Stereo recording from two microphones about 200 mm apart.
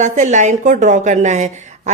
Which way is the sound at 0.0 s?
35° right (ahead or behind).